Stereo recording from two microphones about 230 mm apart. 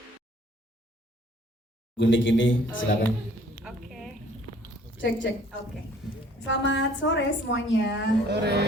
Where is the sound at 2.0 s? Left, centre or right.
Left.